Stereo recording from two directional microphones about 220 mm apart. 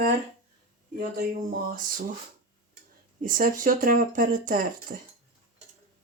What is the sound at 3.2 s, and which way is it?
Speech, 40° right (ahead or behind).